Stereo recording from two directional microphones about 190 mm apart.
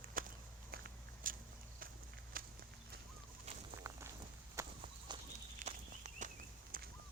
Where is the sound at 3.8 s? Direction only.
15° right (ahead or behind).